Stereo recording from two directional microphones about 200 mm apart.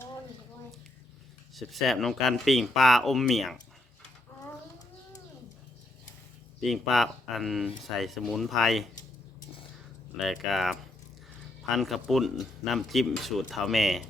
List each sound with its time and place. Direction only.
1.5 s speech: centre (ahead or behind)
6.6 s speech: centre (ahead or behind)
10.2 s speech: centre (ahead or behind)
11.8 s speech: centre (ahead or behind)